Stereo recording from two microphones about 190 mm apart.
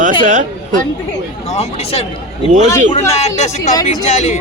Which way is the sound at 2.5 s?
40° right (ahead or behind).